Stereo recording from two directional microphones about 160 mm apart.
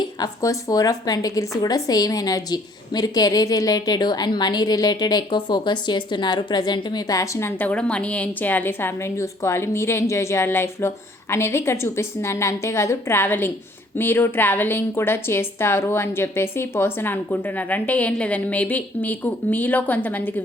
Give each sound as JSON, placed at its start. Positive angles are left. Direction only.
{"t": 0.0, "sound": "a woman's voice", "side_deg": 20}